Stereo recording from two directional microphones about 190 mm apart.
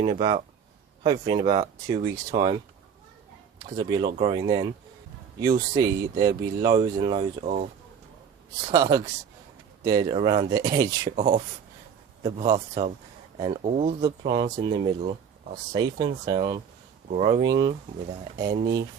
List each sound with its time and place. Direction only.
0.0 s speech: 25° right (ahead or behind)
3.8 s speech: 20° right (ahead or behind)
8.6 s speech: 20° right (ahead or behind)
11.2 s speech: 35° right (ahead or behind)
12.2 s speech: 20° right (ahead or behind)
12.5 s speech: 35° right (ahead or behind)
14.0 s speech: 25° right (ahead or behind)
17.1 s speech: 35° right (ahead or behind)
17.4 s speech: 20° right (ahead or behind)
18.6 s speech: 60° right (ahead or behind)